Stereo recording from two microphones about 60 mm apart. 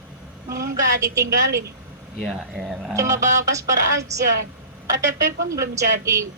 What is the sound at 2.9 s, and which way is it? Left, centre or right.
Speech, right.